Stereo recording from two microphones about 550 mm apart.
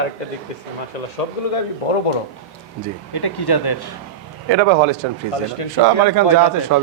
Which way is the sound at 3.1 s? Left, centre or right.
Left.